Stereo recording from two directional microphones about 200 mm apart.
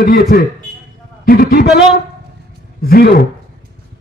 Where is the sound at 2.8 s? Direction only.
50° left (ahead or behind).